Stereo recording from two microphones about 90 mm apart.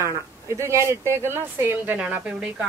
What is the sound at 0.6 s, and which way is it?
Speech, 30° right (ahead or behind).